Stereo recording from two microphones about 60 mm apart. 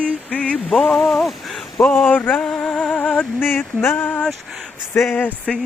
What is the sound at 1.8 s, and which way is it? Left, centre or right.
Speech, left.